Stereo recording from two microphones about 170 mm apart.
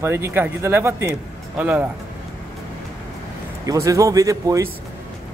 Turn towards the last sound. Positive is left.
turn(degrees=-20)  # may be behind; listen again after turning